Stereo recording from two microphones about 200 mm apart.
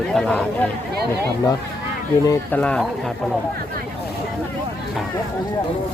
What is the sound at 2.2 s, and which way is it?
Speech, 10° left (ahead or behind).